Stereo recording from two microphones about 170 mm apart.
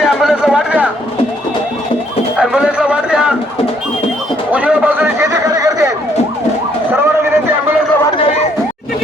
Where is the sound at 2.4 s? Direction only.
5° right (ahead or behind).